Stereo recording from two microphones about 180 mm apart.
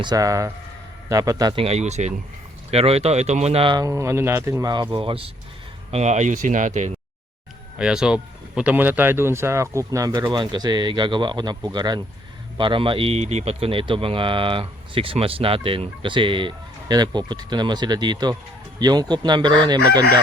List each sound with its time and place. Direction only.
0.0 s speech: 20° right (ahead or behind); by 6.9 s 45° right (ahead or behind)
7.8 s speech: 5° right (ahead or behind); by 20.1 s 20° right (ahead or behind)